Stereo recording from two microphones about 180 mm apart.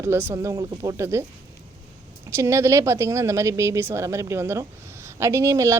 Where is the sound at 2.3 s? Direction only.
15° right (ahead or behind).